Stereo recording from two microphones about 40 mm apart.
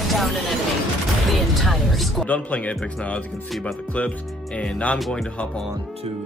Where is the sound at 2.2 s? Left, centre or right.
Left.